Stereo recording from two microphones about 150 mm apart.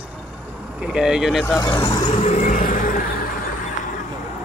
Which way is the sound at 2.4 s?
65° left (ahead or behind).